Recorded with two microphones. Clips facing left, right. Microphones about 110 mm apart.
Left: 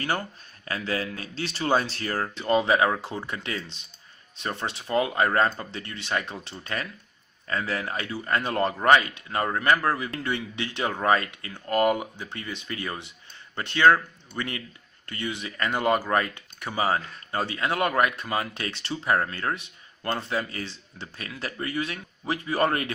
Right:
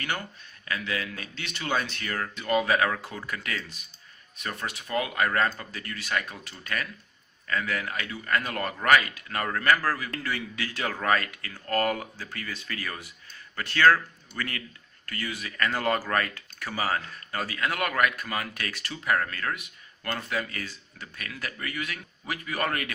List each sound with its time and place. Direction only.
0.0 s speech: 35° left (ahead or behind)